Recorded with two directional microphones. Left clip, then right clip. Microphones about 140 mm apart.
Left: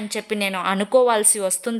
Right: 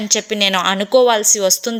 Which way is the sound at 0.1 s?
15° right (ahead or behind).